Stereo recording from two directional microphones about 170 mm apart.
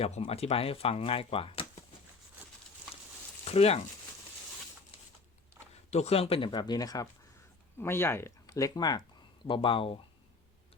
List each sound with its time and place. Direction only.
0.0 s speech: 35° left (ahead or behind)
3.4 s speech: 35° left (ahead or behind)
5.9 s speech: 40° left (ahead or behind)